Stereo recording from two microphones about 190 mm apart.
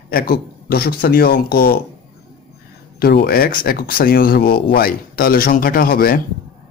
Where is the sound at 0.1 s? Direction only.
50° left (ahead or behind).